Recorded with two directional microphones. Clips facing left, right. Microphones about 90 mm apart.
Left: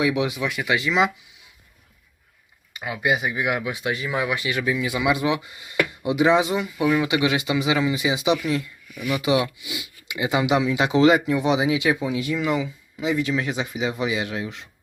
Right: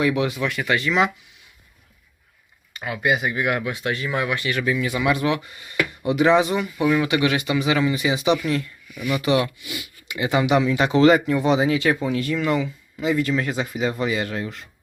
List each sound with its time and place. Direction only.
0.0 s speech: 5° left (ahead or behind)
2.7 s speech: 10° left (ahead or behind)